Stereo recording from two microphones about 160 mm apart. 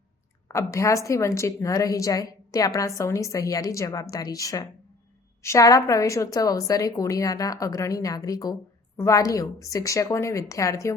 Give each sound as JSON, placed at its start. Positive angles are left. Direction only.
{"t": 0.4, "sound": "a woman's voice", "side_deg": 20}